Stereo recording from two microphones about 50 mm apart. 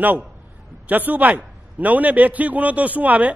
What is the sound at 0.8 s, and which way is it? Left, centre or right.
A man's voice, right.